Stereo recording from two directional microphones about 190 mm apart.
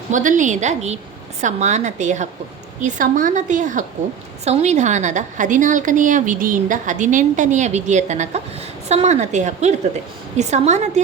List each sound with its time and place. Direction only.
0.1 s a woman's voice: 40° right (ahead or behind)